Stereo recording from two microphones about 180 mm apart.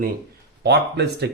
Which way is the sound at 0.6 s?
65° right (ahead or behind).